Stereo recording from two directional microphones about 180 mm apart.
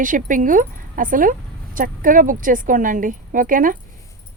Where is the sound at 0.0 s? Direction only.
45° right (ahead or behind).